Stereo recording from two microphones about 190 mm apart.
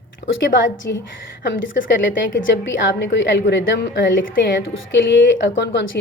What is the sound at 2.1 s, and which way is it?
A woman's voice, 75° left (ahead or behind).